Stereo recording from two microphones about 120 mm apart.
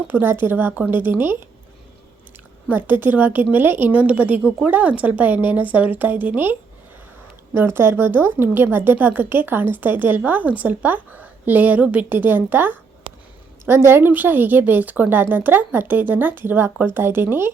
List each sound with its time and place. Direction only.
0.1 s a woman's voice: 15° right (ahead or behind)
2.6 s a woman's voice: 15° right (ahead or behind)